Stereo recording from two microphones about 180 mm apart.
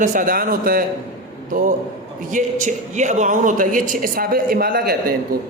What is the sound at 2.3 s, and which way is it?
Speech, 45° right (ahead or behind).